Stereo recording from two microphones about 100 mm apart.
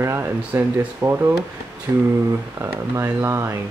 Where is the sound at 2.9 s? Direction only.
30° right (ahead or behind).